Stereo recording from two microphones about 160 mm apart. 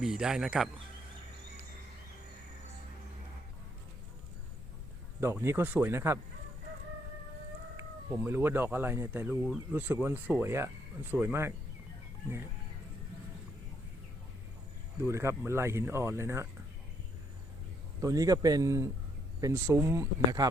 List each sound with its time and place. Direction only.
0.0 s speech: 5° right (ahead or behind)
5.2 s speech: 15° right (ahead or behind)
7.8 s speech: 15° right (ahead or behind)
15.0 s speech: 15° right (ahead or behind)
18.0 s speech: 20° right (ahead or behind)